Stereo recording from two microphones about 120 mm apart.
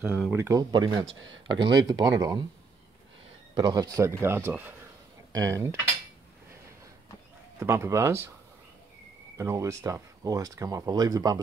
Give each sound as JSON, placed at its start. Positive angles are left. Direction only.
{"t": 0.3, "sound": "speech", "side_deg": -25}
{"t": 0.7, "sound": "speech", "side_deg": -35}
{"t": 3.5, "sound": "speech", "side_deg": -35}
{"t": 5.3, "sound": "speech", "side_deg": -30}
{"t": 7.5, "sound": "speech", "side_deg": -20}
{"t": 9.4, "sound": "speech", "side_deg": -25}